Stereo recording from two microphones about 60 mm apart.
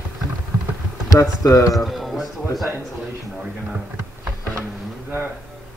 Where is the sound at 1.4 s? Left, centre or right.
Left.